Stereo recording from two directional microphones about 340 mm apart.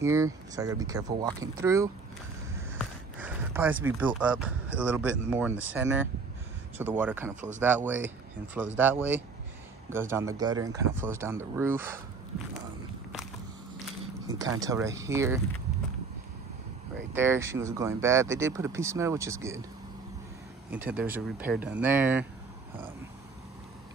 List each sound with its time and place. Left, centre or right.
0.0 s speech: centre
14.2 s speech: centre
17.1 s speech: centre
20.7 s speech: centre